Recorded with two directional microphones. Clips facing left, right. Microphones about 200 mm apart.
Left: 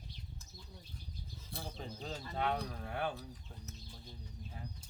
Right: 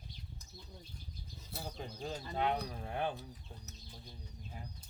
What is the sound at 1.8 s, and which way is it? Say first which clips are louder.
Speech: right 3 dB; 15° right (ahead or behind).